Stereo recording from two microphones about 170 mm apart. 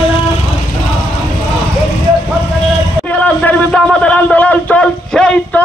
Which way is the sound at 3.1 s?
10° left (ahead or behind).